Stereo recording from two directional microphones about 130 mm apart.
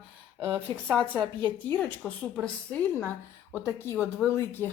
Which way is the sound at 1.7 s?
10° left (ahead or behind).